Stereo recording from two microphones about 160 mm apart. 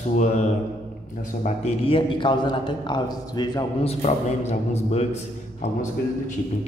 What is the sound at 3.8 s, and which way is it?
A man's voice, 40° left (ahead or behind).